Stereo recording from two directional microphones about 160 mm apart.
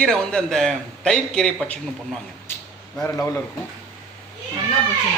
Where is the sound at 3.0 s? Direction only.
15° left (ahead or behind).